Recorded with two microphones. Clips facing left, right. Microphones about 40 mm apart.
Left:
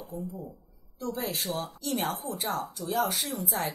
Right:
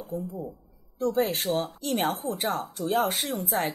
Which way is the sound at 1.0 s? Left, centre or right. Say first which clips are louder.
Right 7 dB; right.